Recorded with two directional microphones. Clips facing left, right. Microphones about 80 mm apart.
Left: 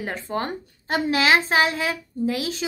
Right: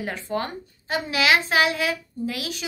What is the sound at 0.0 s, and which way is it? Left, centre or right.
A woman's voice, left.